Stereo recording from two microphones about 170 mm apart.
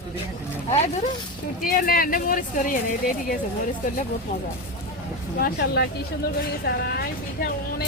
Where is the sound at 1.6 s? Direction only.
55° left (ahead or behind).